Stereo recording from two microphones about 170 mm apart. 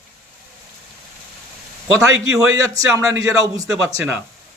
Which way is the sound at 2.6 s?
20° right (ahead or behind).